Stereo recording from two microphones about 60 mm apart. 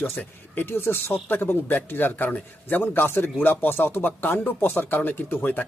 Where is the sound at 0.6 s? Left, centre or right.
Left.